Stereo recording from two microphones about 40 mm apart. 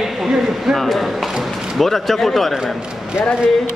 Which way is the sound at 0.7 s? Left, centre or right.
Centre.